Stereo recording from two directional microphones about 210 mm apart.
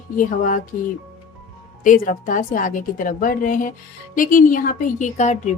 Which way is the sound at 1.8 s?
40° left (ahead or behind).